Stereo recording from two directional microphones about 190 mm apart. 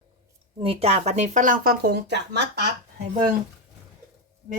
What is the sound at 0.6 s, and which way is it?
Speech, 30° right (ahead or behind).